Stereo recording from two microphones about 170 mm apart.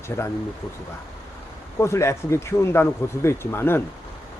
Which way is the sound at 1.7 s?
15° left (ahead or behind).